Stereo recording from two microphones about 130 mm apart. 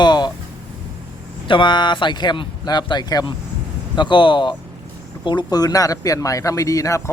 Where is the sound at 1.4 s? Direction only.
40° left (ahead or behind).